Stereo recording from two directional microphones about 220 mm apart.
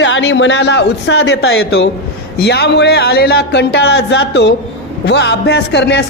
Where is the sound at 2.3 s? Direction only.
50° left (ahead or behind).